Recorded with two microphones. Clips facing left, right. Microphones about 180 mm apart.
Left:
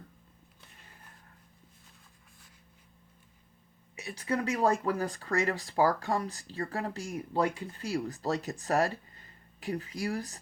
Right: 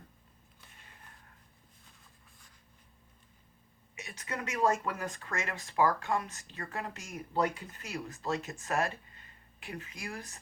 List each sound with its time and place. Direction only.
3.9 s speech: 35° left (ahead or behind)